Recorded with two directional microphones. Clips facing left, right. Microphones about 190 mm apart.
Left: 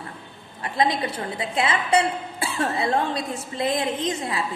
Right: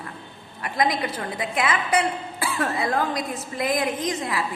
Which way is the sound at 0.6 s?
30° left (ahead or behind).